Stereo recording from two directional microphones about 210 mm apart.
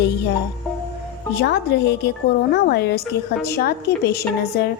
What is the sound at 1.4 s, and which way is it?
A woman's voice, 55° left (ahead or behind).